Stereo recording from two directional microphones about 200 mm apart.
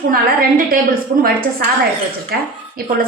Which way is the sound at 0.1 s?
45° right (ahead or behind).